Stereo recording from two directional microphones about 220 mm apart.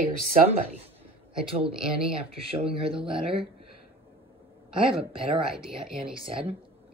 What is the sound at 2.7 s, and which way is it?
Speech, 25° right (ahead or behind).